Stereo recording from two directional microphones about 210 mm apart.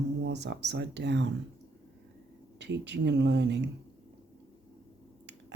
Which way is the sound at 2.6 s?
55° right (ahead or behind).